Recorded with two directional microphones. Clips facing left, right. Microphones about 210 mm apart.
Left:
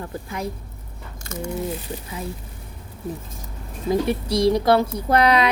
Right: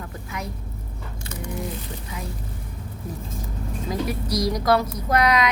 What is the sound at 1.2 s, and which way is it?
Speech, 45° left (ahead or behind).